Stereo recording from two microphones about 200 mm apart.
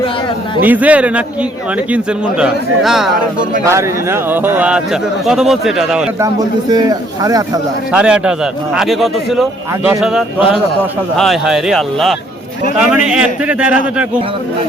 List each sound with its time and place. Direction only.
0.6 s a man's voice: 10° right (ahead or behind)
3.7 s speech: 15° right (ahead or behind)
6.1 s speech: 15° right (ahead or behind)
7.9 s speech: 5° right (ahead or behind)